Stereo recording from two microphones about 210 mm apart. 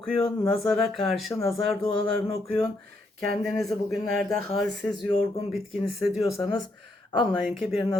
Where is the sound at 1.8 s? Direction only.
30° left (ahead or behind).